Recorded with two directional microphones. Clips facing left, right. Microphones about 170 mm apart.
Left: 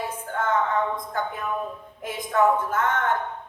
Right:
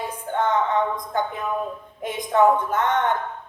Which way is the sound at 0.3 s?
20° right (ahead or behind).